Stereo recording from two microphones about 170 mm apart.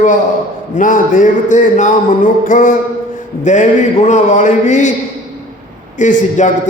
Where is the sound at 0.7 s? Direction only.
50° left (ahead or behind).